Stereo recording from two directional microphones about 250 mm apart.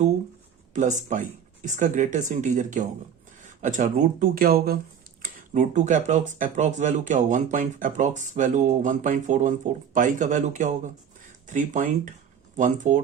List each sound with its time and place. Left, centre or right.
0.7 s speech: right